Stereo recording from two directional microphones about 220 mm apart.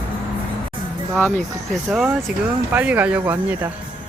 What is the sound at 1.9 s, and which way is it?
Speech, centre (ahead or behind).